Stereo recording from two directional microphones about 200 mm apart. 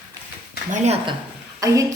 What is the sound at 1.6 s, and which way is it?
Speech, 15° right (ahead or behind).